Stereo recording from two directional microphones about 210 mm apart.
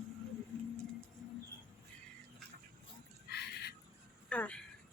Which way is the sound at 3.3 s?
50° left (ahead or behind).